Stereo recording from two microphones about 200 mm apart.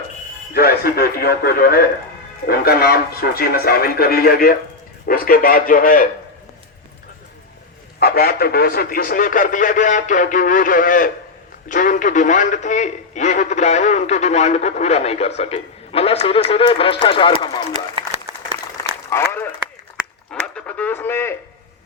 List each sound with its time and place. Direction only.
0.5 s speech: 50° left (ahead or behind)
7.9 s speech: 50° left (ahead or behind); by 17.9 s 25° left (ahead or behind)
19.1 s a sound: 10° left (ahead or behind)
20.3 s speech: 5° left (ahead or behind)